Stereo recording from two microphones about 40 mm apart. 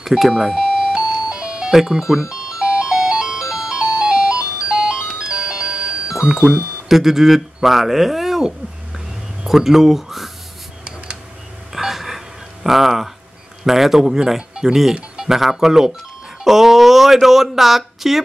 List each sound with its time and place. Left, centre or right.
0.0 s speech: centre
0.3 s music: centre
6.9 s speech: centre
9.5 s speech: centre
11.7 s a sound: centre
12.6 s speech: centre